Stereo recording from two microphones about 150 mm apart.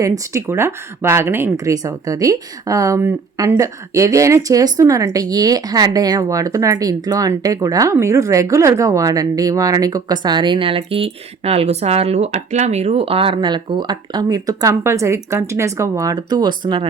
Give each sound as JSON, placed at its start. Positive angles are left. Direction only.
{"t": 0.0, "sound": "speech", "side_deg": -20}